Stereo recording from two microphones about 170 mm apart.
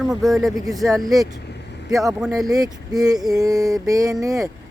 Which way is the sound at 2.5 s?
20° right (ahead or behind).